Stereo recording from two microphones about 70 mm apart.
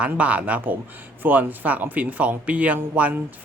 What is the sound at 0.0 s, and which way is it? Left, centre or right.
Speech, right.